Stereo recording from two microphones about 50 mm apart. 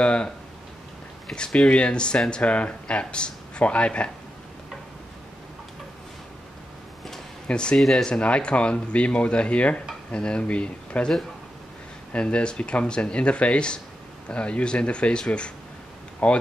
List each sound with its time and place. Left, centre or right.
0.0 s speech: left
1.3 s speech: centre
7.4 s speech: centre
12.1 s speech: left